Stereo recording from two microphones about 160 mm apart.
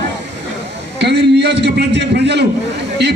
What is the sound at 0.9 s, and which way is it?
A man's voice, 90° right.